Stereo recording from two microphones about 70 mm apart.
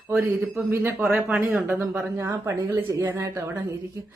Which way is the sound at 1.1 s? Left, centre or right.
Centre.